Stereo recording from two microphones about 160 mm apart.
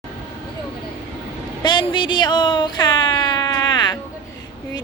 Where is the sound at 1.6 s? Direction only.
30° left (ahead or behind).